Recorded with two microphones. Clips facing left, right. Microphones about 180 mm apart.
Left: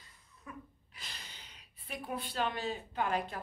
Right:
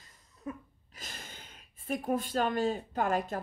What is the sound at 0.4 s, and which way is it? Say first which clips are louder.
Speech: right 8 dB; 45° right (ahead or behind).